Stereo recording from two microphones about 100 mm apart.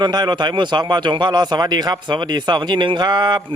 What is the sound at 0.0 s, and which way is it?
Speech, 45° right (ahead or behind).